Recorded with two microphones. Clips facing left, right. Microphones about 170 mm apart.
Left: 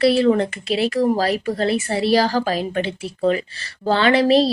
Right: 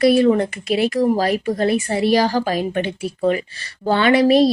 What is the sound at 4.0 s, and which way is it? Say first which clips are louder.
Speech: right 1 dB; 30° left (ahead or behind).